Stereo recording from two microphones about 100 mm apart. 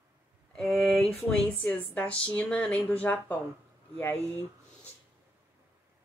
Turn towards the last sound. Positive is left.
turn(degrees=20)  # may be behind; listen again after turning